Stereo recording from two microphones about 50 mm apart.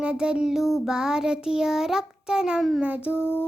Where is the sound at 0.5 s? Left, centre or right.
Centre.